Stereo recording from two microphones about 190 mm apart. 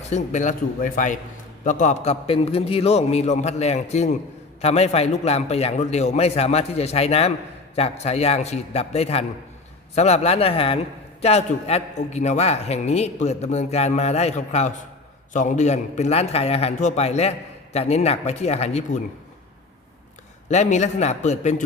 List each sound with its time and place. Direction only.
0.1 s a man's voice: 40° left (ahead or behind)
20.5 s a man's voice: 40° left (ahead or behind)